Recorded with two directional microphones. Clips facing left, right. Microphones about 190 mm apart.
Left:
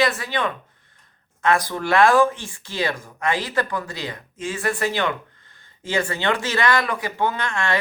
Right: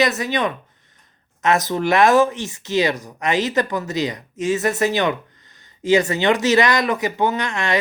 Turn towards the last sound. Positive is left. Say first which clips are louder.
# right 3 dB
turn(degrees=-15)  # may be behind; listen again after turning